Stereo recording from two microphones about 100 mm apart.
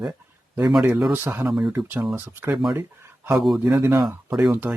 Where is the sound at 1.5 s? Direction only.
5° right (ahead or behind).